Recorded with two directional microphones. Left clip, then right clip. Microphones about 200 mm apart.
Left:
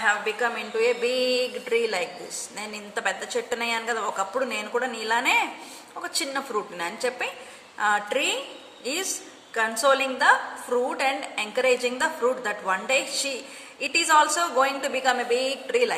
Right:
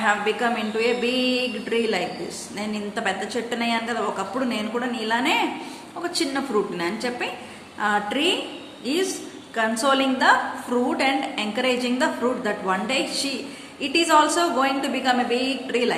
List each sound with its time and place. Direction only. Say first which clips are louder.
0.0 s a woman's voice: right 2 dB; 30° left (ahead or behind)